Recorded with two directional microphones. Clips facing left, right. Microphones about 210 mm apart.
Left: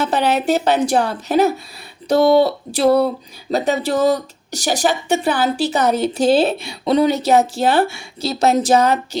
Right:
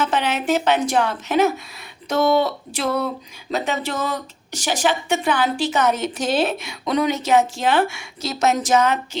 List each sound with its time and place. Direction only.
0.0 s speech: 35° left (ahead or behind)